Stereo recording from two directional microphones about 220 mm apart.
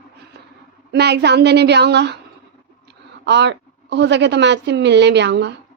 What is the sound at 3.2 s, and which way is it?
A woman's voice, 50° right (ahead or behind).